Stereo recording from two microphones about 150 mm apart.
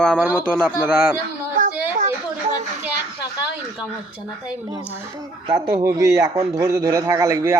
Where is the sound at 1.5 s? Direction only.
60° right (ahead or behind).